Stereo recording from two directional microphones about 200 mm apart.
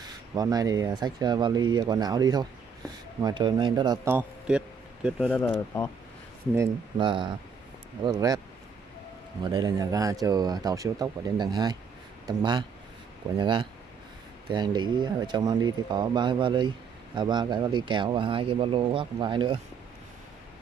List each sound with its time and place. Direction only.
0.0 s a man's voice: 20° right (ahead or behind)
5.3 s speech: 10° left (ahead or behind)
6.5 s speech: 20° right (ahead or behind)
9.4 s speech: 20° right (ahead or behind)